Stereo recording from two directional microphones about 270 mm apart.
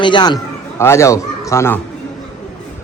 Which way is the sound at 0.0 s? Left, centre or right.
Centre.